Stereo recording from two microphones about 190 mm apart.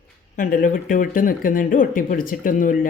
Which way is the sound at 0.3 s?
45° left (ahead or behind).